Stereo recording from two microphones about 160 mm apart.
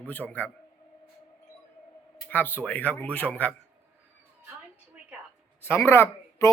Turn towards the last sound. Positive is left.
turn(degrees=15)  # may be behind; listen again after turning